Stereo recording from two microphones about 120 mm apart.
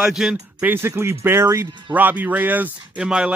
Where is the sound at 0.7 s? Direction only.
20° right (ahead or behind).